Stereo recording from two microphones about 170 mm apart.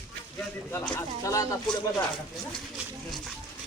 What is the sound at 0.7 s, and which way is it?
Speech, 15° left (ahead or behind).